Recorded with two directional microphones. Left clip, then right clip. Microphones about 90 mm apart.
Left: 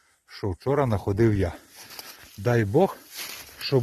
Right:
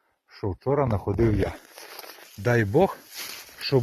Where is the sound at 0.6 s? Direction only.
80° left; by 1.3 s 60° left (ahead or behind).